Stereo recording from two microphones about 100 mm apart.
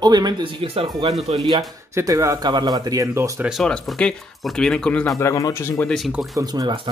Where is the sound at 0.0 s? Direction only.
45° right (ahead or behind); by 1.5 s 75° right (ahead or behind).